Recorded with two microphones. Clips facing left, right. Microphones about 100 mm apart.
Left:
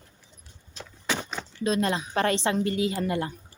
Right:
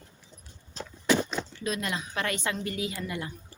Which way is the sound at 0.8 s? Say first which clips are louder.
Right 3 dB; 35° right (ahead or behind).